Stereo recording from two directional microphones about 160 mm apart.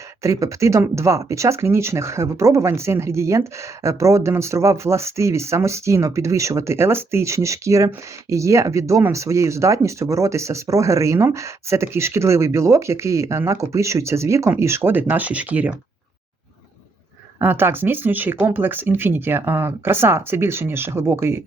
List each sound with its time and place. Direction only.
0.2 s speech: 20° right (ahead or behind)
17.4 s speech: 15° right (ahead or behind)